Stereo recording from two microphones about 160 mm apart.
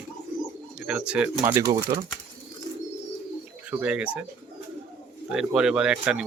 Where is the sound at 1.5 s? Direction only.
20° right (ahead or behind).